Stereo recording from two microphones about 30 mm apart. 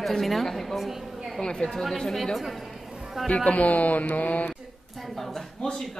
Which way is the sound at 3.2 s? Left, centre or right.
Centre.